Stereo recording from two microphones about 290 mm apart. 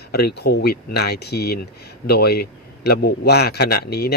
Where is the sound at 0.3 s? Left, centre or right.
Left.